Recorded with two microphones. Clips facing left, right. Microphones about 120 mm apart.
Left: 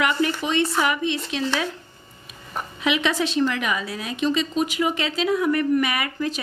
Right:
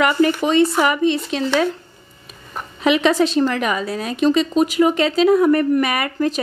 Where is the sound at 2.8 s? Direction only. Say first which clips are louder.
Right 7 dB; 40° right (ahead or behind).